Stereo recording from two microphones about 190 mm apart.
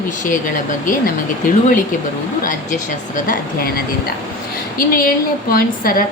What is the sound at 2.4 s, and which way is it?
A woman's voice, 45° left (ahead or behind).